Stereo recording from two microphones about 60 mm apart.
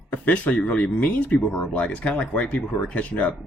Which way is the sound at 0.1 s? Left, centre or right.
Left.